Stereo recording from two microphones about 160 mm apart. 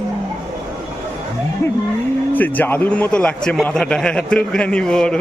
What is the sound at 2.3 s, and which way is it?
A man's voice, 10° left (ahead or behind).